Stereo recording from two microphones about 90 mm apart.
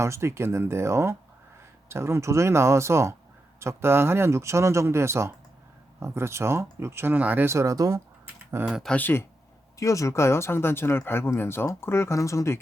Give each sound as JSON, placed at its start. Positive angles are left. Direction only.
{"t": 0.0, "sound": "speech", "side_deg": -30}
{"t": 7.4, "sound": "speech", "side_deg": -35}
{"t": 8.4, "sound": "speech", "side_deg": -25}
{"t": 8.9, "sound": "speech", "side_deg": 20}
{"t": 9.7, "sound": "speech", "side_deg": 35}